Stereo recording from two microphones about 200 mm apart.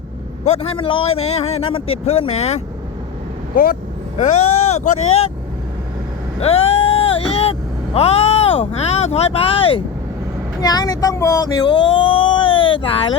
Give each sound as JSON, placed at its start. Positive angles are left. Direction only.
{"t": 0.4, "sound": "a man's voice", "side_deg": 30}
{"t": 3.5, "sound": "speech", "side_deg": 45}
{"t": 4.2, "sound": "speech", "side_deg": 35}
{"t": 6.4, "sound": "vehicle", "side_deg": 30}
{"t": 7.9, "sound": "speech", "side_deg": 30}